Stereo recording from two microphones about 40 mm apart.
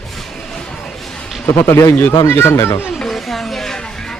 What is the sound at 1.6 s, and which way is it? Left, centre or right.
Speech, left.